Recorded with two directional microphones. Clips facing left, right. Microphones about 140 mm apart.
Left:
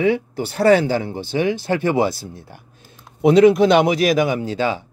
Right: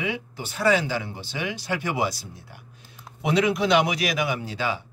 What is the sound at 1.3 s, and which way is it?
Speech, 30° left (ahead or behind).